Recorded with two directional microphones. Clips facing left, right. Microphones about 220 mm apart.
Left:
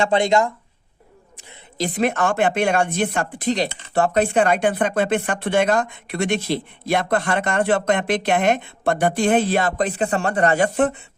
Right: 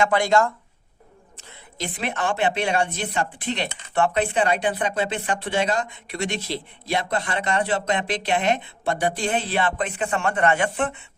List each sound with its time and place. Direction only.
0.0 s speech: 25° left (ahead or behind)
1.8 s speech: 45° left (ahead or behind)